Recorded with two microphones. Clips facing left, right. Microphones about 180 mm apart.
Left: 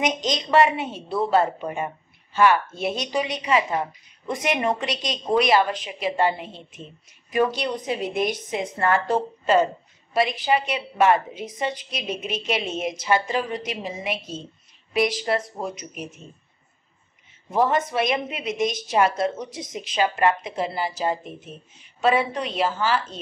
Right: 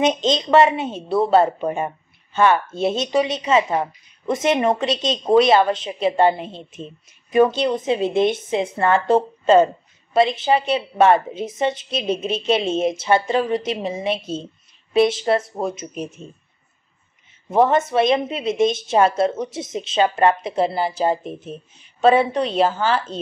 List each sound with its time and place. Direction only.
0.0 s speech: 25° right (ahead or behind)
17.5 s speech: 25° right (ahead or behind)